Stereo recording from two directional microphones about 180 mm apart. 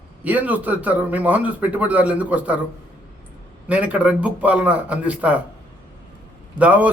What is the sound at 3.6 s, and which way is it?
A man's voice, 5° right (ahead or behind).